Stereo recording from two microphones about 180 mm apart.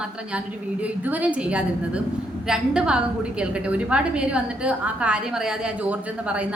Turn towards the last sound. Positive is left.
turn(degrees=-10)  # may be behind; listen again after turning